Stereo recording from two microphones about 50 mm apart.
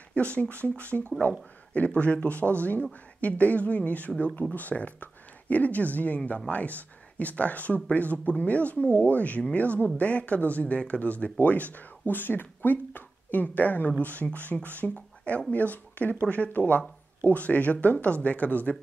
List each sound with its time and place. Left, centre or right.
0.1 s speech: left